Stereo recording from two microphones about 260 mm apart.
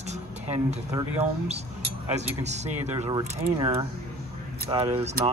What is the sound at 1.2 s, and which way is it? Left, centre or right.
Speech, right.